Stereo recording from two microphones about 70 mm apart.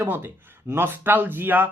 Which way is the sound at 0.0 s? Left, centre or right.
Right.